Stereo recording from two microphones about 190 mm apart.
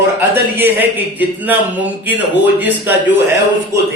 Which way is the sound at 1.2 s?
10° right (ahead or behind).